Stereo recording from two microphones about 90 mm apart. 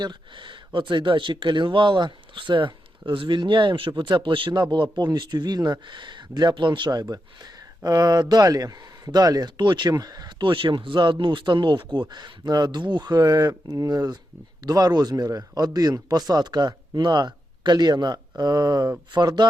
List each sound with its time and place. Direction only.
0.0 s speech: 60° right (ahead or behind)
7.0 s a man's voice: 45° right (ahead or behind)